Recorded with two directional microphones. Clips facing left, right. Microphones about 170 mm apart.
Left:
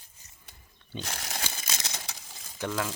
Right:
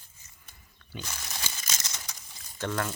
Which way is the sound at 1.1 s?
65° left (ahead or behind).